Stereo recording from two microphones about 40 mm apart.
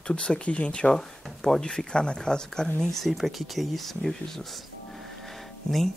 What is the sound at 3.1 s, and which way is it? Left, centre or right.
Speech, centre.